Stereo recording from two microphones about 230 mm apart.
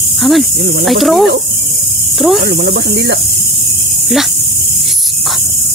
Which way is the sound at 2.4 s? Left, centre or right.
Right.